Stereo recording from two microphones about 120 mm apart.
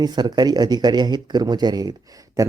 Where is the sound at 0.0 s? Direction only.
35° right (ahead or behind).